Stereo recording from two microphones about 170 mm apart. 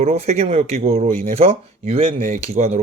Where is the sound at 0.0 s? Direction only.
40° right (ahead or behind).